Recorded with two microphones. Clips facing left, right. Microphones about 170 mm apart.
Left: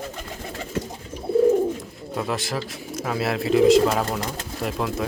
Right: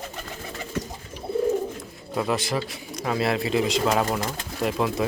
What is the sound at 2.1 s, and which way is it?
Speech, centre (ahead or behind).